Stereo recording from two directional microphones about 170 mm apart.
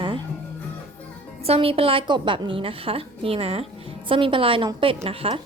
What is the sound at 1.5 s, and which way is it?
A woman's voice, 35° right (ahead or behind).